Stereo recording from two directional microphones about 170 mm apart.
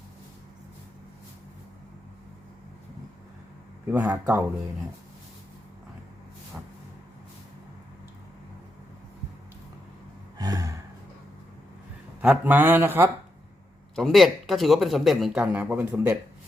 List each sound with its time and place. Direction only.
3.8 s speech: 10° right (ahead or behind)
10.3 s gasp: 20° right (ahead or behind)
12.2 s speech: 10° right (ahead or behind)
13.9 s speech: centre (ahead or behind)